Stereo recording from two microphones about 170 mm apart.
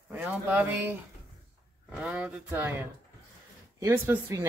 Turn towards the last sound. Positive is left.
turn(degrees=-15)  # may be behind; listen again after turning